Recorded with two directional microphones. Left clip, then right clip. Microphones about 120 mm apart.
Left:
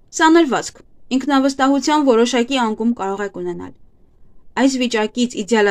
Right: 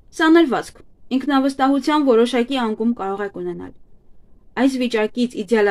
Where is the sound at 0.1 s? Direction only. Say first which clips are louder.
Left 2 dB; 30° left (ahead or behind).